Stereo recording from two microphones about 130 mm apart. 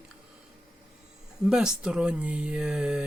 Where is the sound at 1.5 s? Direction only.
5° right (ahead or behind).